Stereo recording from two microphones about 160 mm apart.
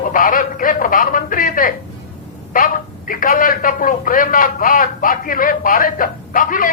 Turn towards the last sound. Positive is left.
turn(degrees=60)  # may be behind; listen again after turning